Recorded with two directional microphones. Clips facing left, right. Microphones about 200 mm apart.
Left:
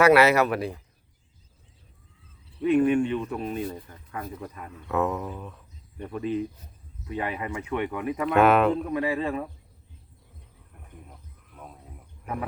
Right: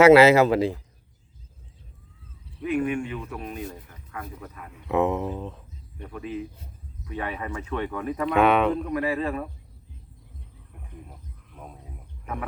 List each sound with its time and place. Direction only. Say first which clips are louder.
0.0 s speech: right 5 dB; 25° right (ahead or behind)
2.6 s speech: left 5 dB; 30° left (ahead or behind)
4.7 s speech: right 3 dB; 20° right (ahead or behind)
6.0 s speech: left 5 dB; 30° left (ahead or behind)
7.1 s speech: left 1 dB; 15° left (ahead or behind)
8.3 s speech: left 1 dB; centre (ahead or behind)
8.9 s speech: even; 20° left (ahead or behind)
11.1 s a sound: right 2 dB; 5° right (ahead or behind)